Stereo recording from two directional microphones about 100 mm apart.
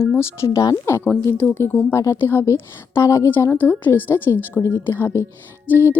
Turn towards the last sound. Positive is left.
turn(degrees=20)  # may be behind; listen again after turning